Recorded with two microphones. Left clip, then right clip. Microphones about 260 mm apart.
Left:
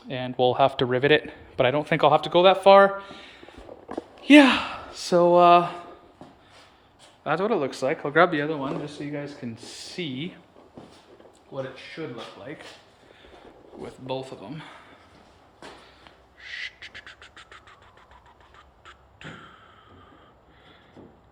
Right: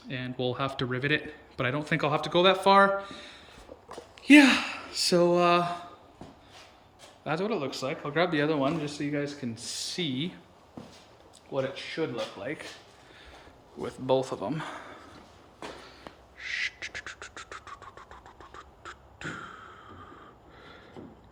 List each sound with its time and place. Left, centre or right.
0.1 s speech: centre
7.3 s speech: centre
8.4 s speech: centre
11.5 s speech: centre
13.8 s speech: centre
16.4 s duck: centre